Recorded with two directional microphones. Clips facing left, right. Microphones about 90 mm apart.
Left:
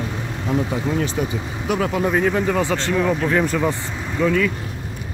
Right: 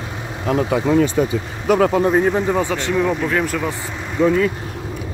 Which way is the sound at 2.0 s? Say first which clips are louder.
Right 3 dB; 30° right (ahead or behind).